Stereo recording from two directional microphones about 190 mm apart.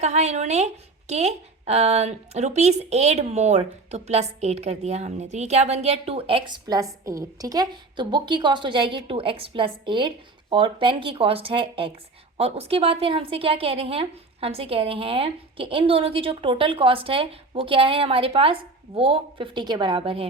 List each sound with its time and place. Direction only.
0.0 s a woman's voice: 35° right (ahead or behind)